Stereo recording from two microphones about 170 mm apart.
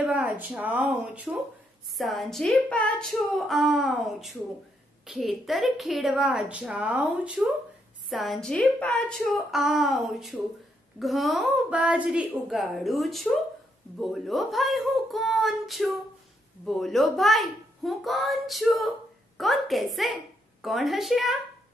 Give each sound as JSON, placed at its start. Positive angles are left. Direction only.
{"t": 0.0, "sound": "a woman's voice", "side_deg": -10}